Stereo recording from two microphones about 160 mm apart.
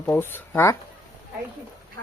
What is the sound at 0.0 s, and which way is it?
Speech, 15° left (ahead or behind).